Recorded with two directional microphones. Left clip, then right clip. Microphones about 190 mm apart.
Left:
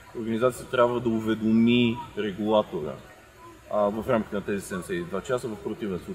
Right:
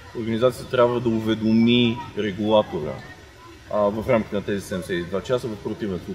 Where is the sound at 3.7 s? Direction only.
5° left (ahead or behind).